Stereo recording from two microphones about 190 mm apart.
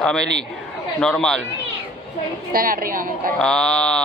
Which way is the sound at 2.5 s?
50° right (ahead or behind).